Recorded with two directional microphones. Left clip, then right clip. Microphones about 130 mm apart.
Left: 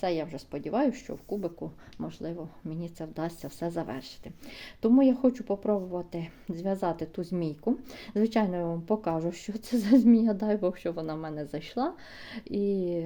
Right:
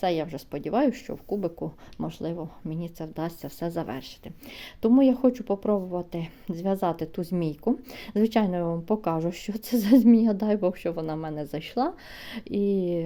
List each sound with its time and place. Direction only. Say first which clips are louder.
0.0 s speech: right 4 dB; 35° right (ahead or behind)